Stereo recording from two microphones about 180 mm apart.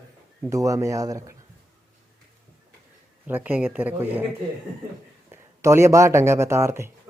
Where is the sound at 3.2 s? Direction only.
10° right (ahead or behind).